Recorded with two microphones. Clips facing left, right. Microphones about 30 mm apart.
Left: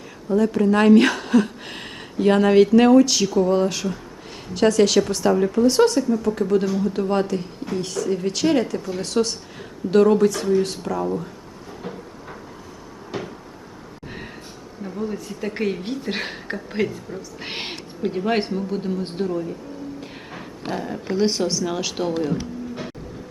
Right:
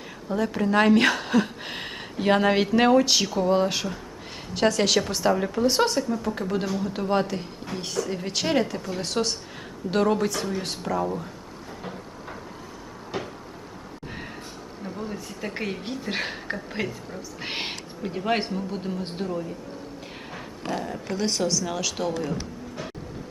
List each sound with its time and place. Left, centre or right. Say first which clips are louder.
0.3 s a woman's voice: left 6 dB; centre
11.8 s a sound: left 5 dB; centre
13.1 s cupboard open or close: left 2 dB; centre
15.1 s a woman's voice: left 4 dB; centre
20.0 s vehicle: left 2 dB; centre
21.1 s speech: left 5 dB; centre